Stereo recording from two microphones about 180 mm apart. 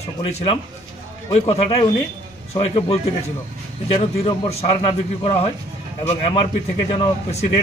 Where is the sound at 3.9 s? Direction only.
35° left (ahead or behind).